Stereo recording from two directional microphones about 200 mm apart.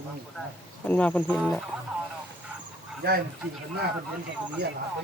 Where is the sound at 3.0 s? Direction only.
55° right (ahead or behind).